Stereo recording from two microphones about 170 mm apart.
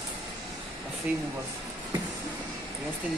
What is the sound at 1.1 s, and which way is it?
Speech, 10° right (ahead or behind).